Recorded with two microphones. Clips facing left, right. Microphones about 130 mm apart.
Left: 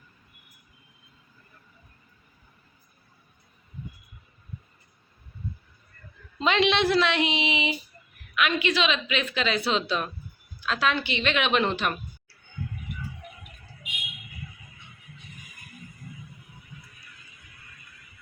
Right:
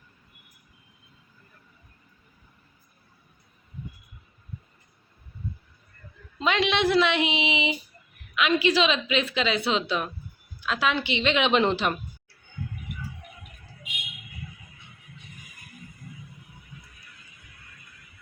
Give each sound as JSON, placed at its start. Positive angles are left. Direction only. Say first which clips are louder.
{"t": 6.4, "sound": "a woman's voice", "louder": "left 1 dB", "side_deg": -5}
{"t": 6.9, "sound": "a woman's voice", "louder": "right 1 dB", "side_deg": -15}